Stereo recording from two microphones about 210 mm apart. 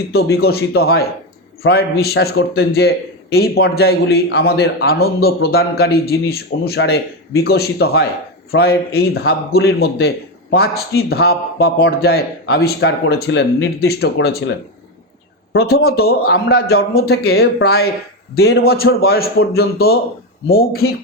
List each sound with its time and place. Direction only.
0.3 s a man's voice: 50° left (ahead or behind)
15.5 s a man's voice: 50° left (ahead or behind)